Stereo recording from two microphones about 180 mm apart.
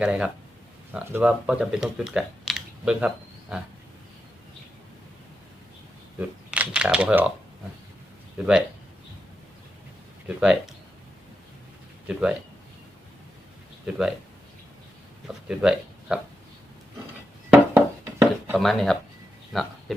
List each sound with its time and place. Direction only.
0.0 s speech: 5° right (ahead or behind)
6.1 s speech: 5° right (ahead or behind)
8.4 s speech: 5° right (ahead or behind)
10.2 s speech: centre (ahead or behind)
13.9 s speech: 5° right (ahead or behind)
15.3 s speech: 5° right (ahead or behind)
17.5 s a sound: 10° right (ahead or behind)
18.5 s speech: centre (ahead or behind)